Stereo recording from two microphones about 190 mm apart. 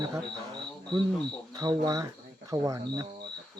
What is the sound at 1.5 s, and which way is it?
Cricket, 20° right (ahead or behind).